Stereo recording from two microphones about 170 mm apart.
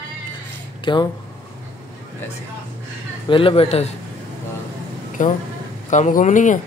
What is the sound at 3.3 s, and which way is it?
Speech, 30° left (ahead or behind).